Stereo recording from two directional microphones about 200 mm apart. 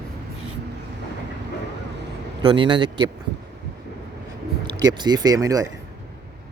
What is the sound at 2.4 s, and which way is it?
Speech, 25° right (ahead or behind).